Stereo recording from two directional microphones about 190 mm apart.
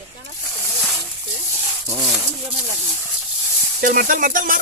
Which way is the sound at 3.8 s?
50° right (ahead or behind).